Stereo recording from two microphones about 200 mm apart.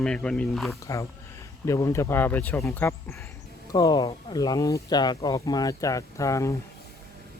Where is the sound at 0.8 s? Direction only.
15° left (ahead or behind).